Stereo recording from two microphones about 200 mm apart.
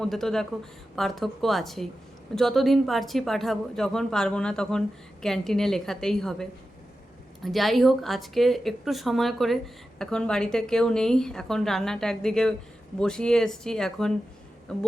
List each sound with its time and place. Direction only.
0.0 s speech: centre (ahead or behind)